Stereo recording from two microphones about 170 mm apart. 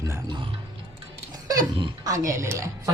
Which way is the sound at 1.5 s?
25° right (ahead or behind).